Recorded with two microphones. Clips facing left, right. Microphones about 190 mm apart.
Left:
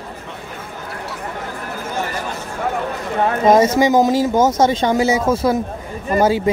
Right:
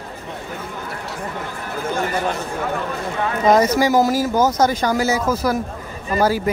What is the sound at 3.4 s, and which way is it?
Speech, 25° left (ahead or behind).